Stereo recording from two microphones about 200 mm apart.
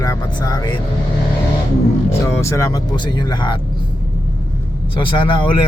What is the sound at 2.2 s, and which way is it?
Speech, 15° left (ahead or behind).